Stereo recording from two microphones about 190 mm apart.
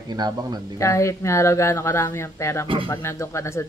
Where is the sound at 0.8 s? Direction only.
15° left (ahead or behind).